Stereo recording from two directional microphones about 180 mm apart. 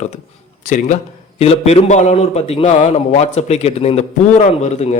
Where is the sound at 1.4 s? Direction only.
35° left (ahead or behind).